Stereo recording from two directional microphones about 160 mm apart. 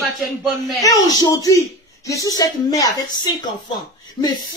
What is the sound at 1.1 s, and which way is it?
Speech, 20° left (ahead or behind).